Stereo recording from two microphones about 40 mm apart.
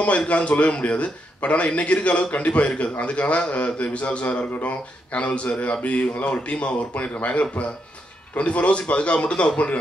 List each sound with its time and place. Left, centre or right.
0.3 s speech: left